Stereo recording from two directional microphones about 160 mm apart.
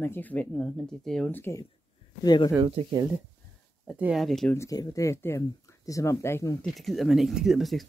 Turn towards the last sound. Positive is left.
turn(degrees=0)  # may be behind; listen again after turning